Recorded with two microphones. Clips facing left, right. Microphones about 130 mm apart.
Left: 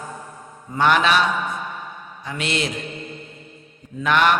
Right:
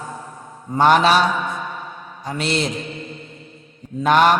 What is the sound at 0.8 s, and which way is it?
Speech, 35° right (ahead or behind).